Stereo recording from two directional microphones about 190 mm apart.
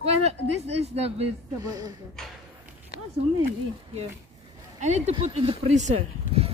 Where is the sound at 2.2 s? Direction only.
5° left (ahead or behind).